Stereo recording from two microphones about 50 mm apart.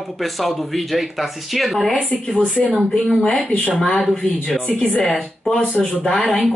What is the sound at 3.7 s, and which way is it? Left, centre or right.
Speech, centre.